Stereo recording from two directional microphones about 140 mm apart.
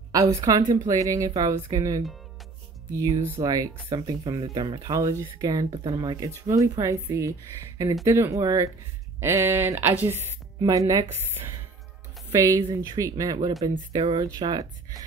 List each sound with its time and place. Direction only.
0.1 s speech: 25° right (ahead or behind)
13.9 s speech: 35° right (ahead or behind)